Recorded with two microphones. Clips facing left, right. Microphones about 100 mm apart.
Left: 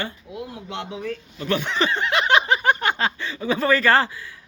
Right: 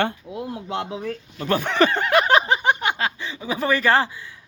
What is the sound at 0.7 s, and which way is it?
Speech, 35° right (ahead or behind).